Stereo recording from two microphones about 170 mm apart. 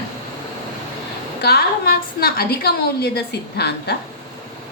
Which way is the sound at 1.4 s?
65° left (ahead or behind).